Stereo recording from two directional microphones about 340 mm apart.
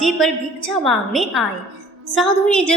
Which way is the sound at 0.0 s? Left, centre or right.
Centre.